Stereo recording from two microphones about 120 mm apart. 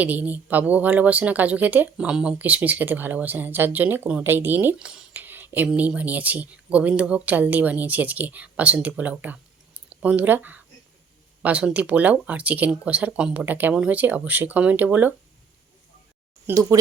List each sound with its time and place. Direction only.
0.0 s speech: 15° right (ahead or behind)
16.6 s speech: 25° right (ahead or behind)